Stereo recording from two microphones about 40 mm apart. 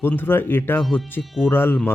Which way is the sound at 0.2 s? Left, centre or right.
Left.